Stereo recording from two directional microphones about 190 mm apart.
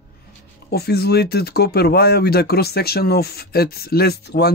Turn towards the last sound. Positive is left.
turn(degrees=55)  # may be behind; listen again after turning